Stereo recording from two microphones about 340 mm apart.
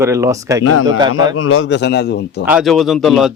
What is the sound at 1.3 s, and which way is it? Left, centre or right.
A man's voice, left.